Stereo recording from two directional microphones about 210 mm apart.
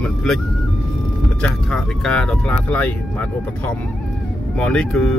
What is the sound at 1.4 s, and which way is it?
Speech, 5° left (ahead or behind).